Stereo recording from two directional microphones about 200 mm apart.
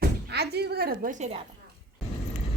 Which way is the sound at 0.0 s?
55° right (ahead or behind).